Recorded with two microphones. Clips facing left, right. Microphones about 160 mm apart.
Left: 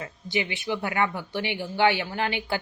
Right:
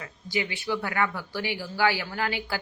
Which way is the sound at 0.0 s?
25° left (ahead or behind).